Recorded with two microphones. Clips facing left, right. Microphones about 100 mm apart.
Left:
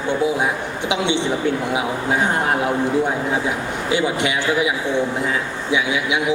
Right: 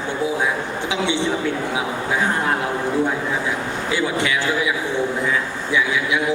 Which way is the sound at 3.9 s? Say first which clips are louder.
Left 2 dB; 20° left (ahead or behind).